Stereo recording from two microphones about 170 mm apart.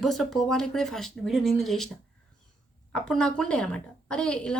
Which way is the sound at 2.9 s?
5° left (ahead or behind).